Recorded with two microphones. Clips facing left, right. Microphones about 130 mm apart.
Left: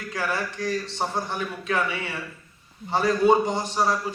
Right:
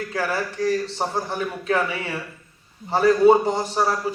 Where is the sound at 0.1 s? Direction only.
30° right (ahead or behind).